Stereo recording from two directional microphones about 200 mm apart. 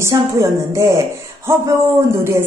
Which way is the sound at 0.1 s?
15° right (ahead or behind).